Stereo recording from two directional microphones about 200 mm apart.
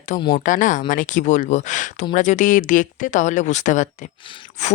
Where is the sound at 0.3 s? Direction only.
40° left (ahead or behind).